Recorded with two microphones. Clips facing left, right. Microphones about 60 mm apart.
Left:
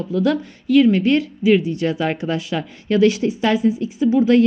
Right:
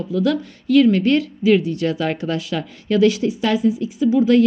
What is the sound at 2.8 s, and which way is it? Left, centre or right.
A woman's voice, left.